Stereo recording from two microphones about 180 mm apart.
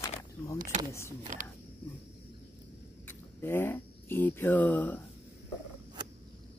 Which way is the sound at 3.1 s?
10° left (ahead or behind).